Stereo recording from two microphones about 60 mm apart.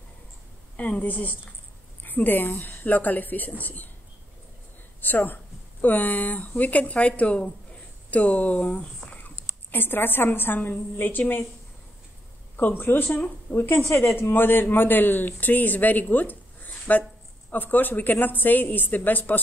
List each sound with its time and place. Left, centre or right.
0.7 s speech: left
5.0 s speech: left
12.6 s a man's voice: left